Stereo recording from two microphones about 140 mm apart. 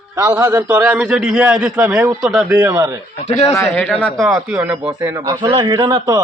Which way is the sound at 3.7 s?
5° left (ahead or behind).